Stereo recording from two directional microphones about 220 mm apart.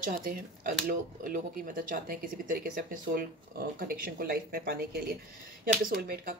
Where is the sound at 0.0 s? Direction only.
40° right (ahead or behind).